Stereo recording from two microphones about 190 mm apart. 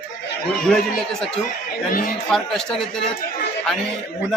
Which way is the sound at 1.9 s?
45° left (ahead or behind).